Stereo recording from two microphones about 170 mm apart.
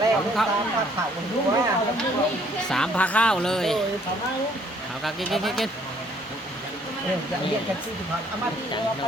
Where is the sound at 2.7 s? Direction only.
5° left (ahead or behind).